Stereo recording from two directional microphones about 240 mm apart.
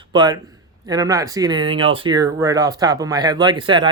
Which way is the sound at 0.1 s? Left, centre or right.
Centre.